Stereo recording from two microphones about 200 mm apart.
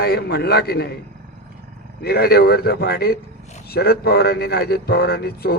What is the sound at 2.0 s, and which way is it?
Speech, 50° left (ahead or behind).